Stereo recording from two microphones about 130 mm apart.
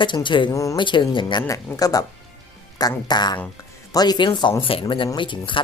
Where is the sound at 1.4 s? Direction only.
25° left (ahead or behind).